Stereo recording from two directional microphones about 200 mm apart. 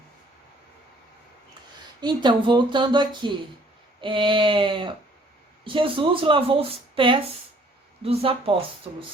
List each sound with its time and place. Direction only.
2.0 s speech: 20° right (ahead or behind)